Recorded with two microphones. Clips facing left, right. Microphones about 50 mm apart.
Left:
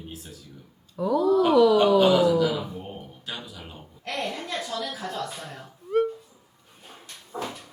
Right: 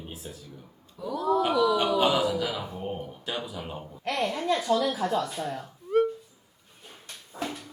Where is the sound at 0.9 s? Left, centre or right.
Left.